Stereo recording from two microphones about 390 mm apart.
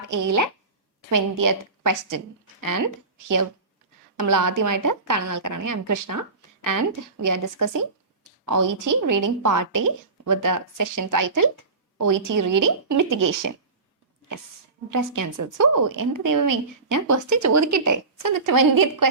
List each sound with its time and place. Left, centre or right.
0.1 s a woman's voice: right
14.8 s a woman's voice: right